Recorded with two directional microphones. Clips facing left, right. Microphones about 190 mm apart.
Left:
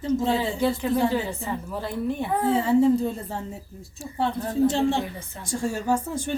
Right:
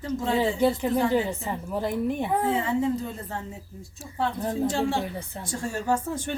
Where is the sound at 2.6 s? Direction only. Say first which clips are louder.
Left 6 dB; 30° left (ahead or behind).